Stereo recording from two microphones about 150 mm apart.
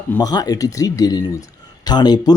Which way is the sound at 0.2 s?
25° left (ahead or behind).